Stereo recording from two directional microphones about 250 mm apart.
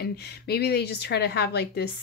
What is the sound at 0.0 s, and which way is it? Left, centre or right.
A woman's voice, left.